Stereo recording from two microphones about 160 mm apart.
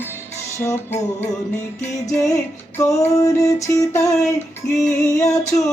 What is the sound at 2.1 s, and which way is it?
Music, 20° left (ahead or behind).